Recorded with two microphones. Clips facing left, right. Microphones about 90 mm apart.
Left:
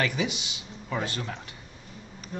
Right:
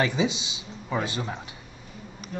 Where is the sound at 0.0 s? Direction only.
20° right (ahead or behind).